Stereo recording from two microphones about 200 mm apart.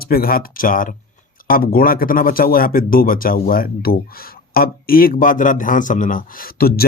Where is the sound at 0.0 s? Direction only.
50° left (ahead or behind).